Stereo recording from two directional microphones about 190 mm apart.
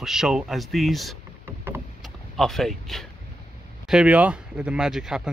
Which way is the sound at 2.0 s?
Centre (ahead or behind).